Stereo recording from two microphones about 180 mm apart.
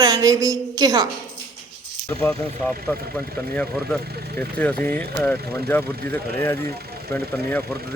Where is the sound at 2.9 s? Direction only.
10° left (ahead or behind).